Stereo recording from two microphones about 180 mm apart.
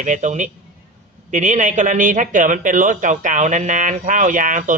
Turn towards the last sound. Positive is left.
turn(degrees=-45)  # may be behind; listen again after turning